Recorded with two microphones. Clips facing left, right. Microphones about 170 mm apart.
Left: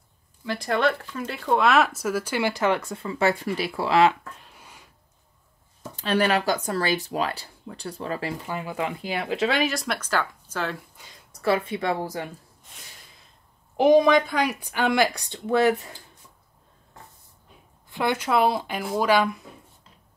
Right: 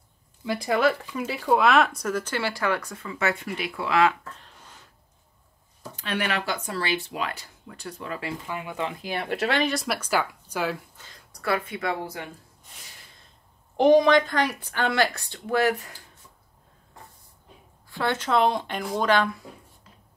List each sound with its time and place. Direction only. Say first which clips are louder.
0.6 s speech: right 1 dB; 5° right (ahead or behind); by 4.1 s 30° left (ahead or behind)
4.4 s a sound: left 1 dB; 10° left (ahead or behind)
5.8 s speech: left 6 dB; 30° left (ahead or behind)
8.7 s speech: left 1 dB; 10° left (ahead or behind); by 10.8 s 10° right (ahead or behind)
11.4 s speech: left 4 dB; 30° left (ahead or behind)
13.7 s speech: even; 10° left (ahead or behind)
17.8 s speech: left 2 dB; 15° left (ahead or behind)